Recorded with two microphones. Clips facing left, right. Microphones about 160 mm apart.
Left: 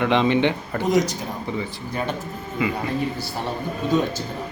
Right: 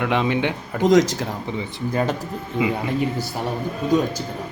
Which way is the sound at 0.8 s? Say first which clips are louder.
Right 5 dB; 90° right.